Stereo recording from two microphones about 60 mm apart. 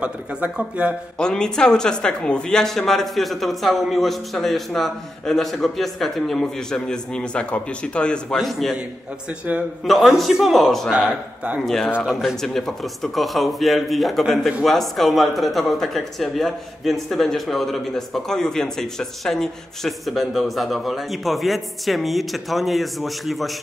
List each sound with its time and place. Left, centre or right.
0.0 s speech: right
1.1 s speech: centre
8.4 s speech: centre
9.8 s speech: centre
11.6 s speech: centre